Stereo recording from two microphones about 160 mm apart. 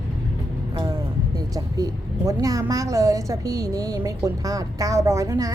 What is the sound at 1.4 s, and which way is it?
A woman's voice, 20° right (ahead or behind).